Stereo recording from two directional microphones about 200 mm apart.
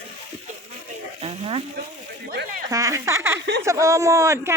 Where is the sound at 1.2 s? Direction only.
30° right (ahead or behind).